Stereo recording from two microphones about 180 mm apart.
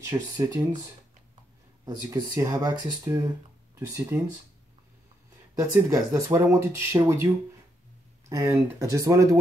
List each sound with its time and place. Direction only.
0.0 s speech: 15° right (ahead or behind)
1.9 s speech: 20° right (ahead or behind)
5.5 s speech: 20° right (ahead or behind)
8.3 s speech: 20° right (ahead or behind)